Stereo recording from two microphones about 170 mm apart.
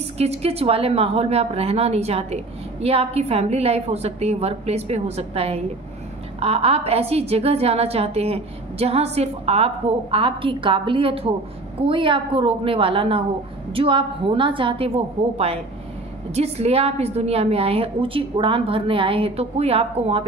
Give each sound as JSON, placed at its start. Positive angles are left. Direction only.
{"t": 0.2, "sound": "a woman's voice", "side_deg": -35}